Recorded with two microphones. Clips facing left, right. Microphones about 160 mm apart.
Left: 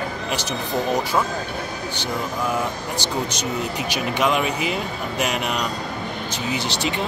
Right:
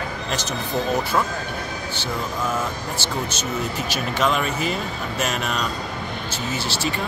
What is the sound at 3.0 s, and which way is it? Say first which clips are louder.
Speech: left 2 dB; 15° left (ahead or behind).